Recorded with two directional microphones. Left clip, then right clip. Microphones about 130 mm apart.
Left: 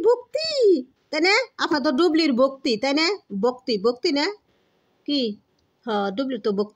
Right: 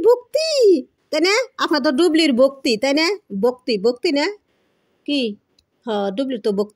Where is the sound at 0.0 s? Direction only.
30° right (ahead or behind).